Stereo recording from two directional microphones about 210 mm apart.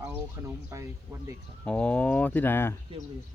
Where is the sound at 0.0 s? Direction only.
10° right (ahead or behind).